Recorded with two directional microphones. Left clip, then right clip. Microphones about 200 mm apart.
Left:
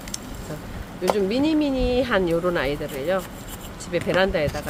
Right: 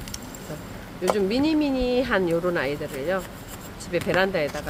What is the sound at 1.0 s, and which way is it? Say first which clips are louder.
Speech: left 1 dB; 5° right (ahead or behind).